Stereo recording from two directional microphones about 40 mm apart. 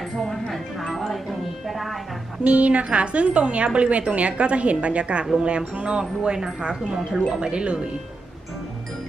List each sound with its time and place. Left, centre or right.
0.2 s a sound: centre
0.5 s music: centre
2.4 s speech: right
5.4 s wind chime: right